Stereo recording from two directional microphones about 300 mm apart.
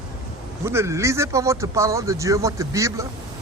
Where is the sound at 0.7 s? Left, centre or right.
Centre.